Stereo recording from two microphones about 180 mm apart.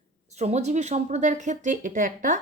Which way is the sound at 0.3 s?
40° right (ahead or behind).